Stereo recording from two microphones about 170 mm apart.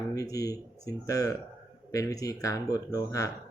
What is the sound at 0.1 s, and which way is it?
Speech, 20° left (ahead or behind).